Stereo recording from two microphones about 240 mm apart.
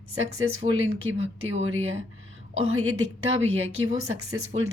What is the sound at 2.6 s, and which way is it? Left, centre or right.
A woman's voice, right.